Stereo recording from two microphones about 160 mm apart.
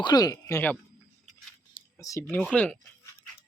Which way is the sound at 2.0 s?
20° left (ahead or behind).